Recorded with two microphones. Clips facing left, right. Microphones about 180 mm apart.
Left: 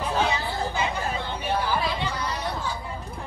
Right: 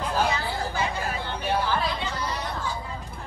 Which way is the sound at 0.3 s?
20° left (ahead or behind).